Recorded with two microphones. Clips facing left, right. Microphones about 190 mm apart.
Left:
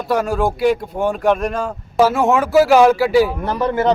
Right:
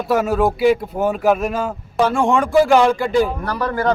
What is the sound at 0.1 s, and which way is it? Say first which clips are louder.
Speech: right 1 dB; centre (ahead or behind).